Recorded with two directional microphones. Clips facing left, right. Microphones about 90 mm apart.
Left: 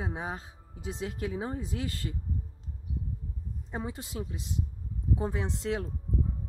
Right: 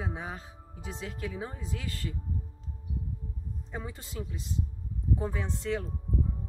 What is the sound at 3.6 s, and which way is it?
Speech, 20° left (ahead or behind).